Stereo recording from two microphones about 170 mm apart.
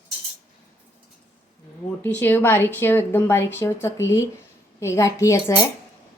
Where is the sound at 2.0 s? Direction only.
10° left (ahead or behind).